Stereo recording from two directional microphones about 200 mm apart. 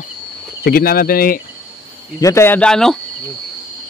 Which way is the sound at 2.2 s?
15° left (ahead or behind).